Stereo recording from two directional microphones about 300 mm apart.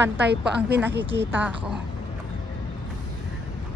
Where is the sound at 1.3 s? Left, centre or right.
Centre.